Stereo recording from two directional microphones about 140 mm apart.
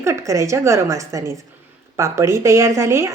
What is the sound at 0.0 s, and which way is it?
Speech, 20° right (ahead or behind).